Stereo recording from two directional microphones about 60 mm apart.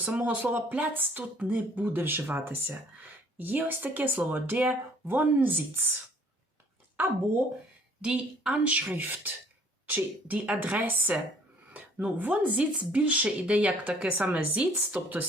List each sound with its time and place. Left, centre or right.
0.0 s speech: right
8.0 s speech: centre